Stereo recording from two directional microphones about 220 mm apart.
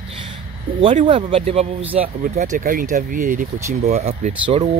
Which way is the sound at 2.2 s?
35° right (ahead or behind).